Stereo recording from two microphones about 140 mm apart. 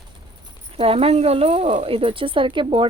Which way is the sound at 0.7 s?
40° right (ahead or behind).